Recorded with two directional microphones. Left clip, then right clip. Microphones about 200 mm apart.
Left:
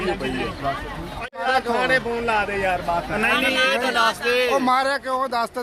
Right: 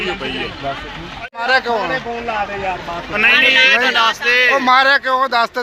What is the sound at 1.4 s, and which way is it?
Speech, 5° right (ahead or behind).